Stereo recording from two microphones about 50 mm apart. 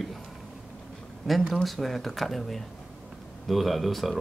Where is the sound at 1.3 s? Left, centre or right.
Centre.